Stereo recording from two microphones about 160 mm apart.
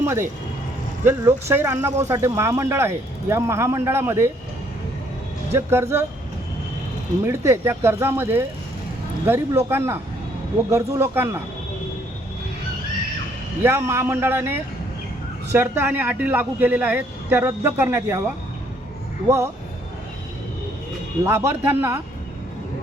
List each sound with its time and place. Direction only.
0.0 s speech: 15° right (ahead or behind)
5.5 s speech: 15° right (ahead or behind)
7.3 s speech: 15° right (ahead or behind)
13.6 s speech: 15° right (ahead or behind)
21.2 s speech: 15° right (ahead or behind)